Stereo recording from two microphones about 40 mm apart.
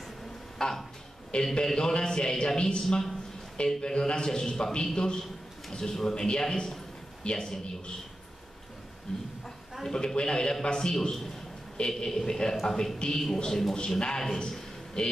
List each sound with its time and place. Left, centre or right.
0.6 s a man's voice: centre
9.1 s a man's voice: centre
11.0 s a man's voice: centre
13.7 s a man's voice: left